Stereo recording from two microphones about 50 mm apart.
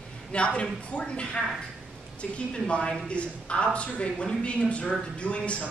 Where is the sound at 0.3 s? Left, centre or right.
Left.